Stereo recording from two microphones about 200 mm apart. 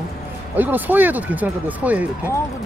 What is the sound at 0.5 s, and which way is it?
Speech, 10° right (ahead or behind).